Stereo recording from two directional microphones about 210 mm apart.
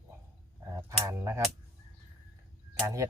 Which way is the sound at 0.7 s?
15° right (ahead or behind).